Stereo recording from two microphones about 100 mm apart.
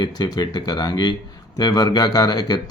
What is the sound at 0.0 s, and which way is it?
Speech, 45° left (ahead or behind).